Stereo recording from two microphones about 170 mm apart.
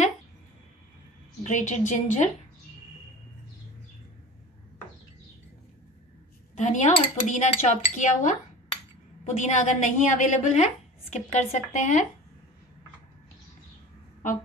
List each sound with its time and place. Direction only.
1.4 s a woman's voice: 45° left (ahead or behind)
6.5 s a woman's voice: 45° left (ahead or behind)